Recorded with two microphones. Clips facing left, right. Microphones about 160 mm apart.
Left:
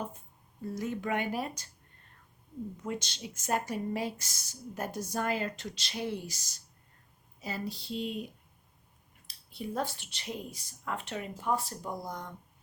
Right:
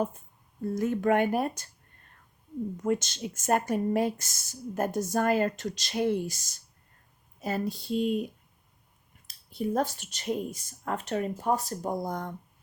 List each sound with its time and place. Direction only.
0.8 s a woman's voice: 50° right (ahead or behind)
2.7 s a woman's voice: 50° right (ahead or behind)